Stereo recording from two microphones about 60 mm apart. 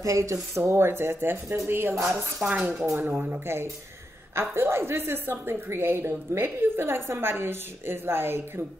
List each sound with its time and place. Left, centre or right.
0.0 s a woman's voice: right
2.4 s speech: right
4.4 s a woman's voice: right